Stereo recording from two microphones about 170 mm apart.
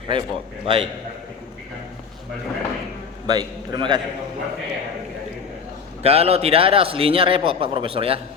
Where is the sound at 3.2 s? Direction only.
25° right (ahead or behind).